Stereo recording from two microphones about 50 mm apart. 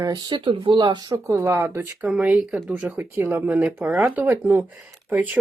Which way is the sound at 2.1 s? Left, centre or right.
Right.